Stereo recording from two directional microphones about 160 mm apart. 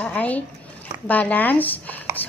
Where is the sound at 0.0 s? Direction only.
10° left (ahead or behind).